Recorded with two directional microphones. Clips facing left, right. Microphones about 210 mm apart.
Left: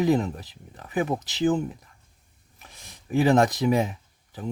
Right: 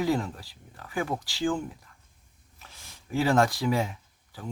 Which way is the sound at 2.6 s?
20° left (ahead or behind).